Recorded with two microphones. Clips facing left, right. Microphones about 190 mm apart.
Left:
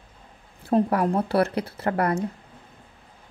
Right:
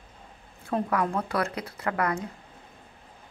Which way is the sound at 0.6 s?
30° left (ahead or behind).